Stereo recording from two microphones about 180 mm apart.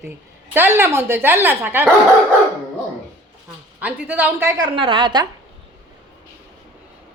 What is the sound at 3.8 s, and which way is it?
Speech, 10° right (ahead or behind).